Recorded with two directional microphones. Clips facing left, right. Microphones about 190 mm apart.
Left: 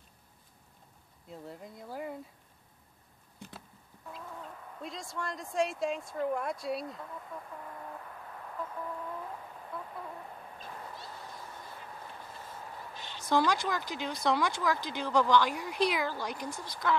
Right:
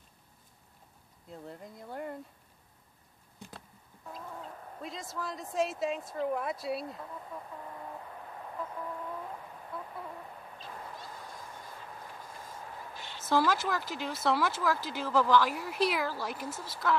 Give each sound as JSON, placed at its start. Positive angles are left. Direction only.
{"t": 1.3, "sound": "speech", "side_deg": 0}
{"t": 4.8, "sound": "speech", "side_deg": 0}
{"t": 8.6, "sound": "a sound", "side_deg": 0}
{"t": 9.7, "sound": "chicken", "side_deg": 0}
{"t": 12.9, "sound": "a sound", "side_deg": 20}
{"t": 13.2, "sound": "speech", "side_deg": -5}